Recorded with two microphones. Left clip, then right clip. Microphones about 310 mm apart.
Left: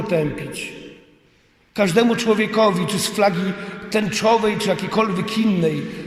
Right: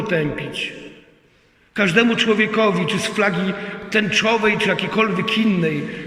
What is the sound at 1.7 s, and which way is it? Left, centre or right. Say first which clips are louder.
A man's voice: right 1 dB; centre.